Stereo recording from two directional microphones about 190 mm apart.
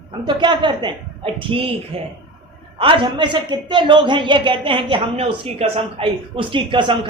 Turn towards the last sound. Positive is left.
turn(degrees=-25)  # may be behind; listen again after turning